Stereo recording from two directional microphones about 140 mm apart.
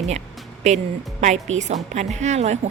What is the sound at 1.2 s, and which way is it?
A woman's voice, 55° right (ahead or behind).